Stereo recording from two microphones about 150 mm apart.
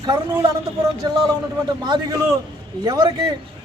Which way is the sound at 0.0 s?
30° right (ahead or behind).